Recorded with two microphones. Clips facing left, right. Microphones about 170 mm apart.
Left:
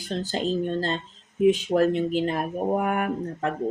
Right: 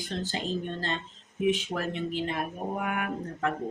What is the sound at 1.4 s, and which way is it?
Speech, 40° left (ahead or behind).